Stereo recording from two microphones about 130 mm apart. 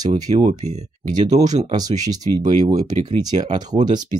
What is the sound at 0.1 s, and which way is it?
Speech, 90° right.